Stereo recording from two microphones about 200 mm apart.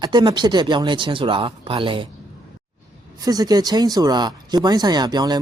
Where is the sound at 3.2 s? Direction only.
20° right (ahead or behind).